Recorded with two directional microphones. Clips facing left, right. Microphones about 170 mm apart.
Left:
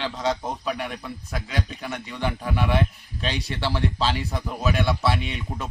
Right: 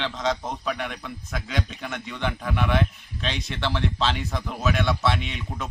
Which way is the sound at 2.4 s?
35° left (ahead or behind).